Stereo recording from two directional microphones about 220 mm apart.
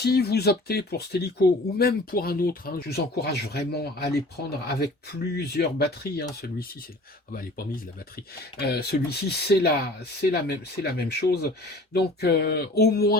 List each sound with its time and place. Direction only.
0.0 s speech: 45° left (ahead or behind)
8.5 s speech: 45° left (ahead or behind)